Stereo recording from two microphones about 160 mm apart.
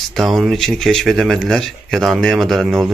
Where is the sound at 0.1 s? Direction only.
Centre (ahead or behind).